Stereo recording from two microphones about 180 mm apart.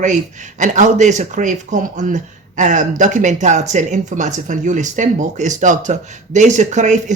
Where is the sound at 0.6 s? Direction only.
45° right (ahead or behind).